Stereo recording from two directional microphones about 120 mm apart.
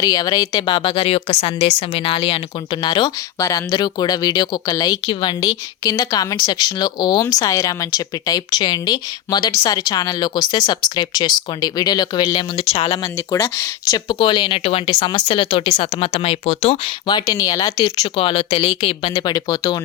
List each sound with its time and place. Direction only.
0.0 s a woman's voice: 30° left (ahead or behind); by 2.4 s 50° left (ahead or behind)
2.8 s speech: 35° left (ahead or behind)
12.9 s speech: 30° left (ahead or behind); by 14.9 s 55° left (ahead or behind)
14.9 s a woman's voice: 40° left (ahead or behind)
16.1 s speech: 60° left (ahead or behind)
17.1 s speech: 35° left (ahead or behind)
18.2 s a woman's voice: 50° left (ahead or behind)
19.1 s speech: 35° left (ahead or behind)